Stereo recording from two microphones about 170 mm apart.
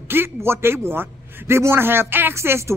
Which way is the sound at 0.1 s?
15° right (ahead or behind).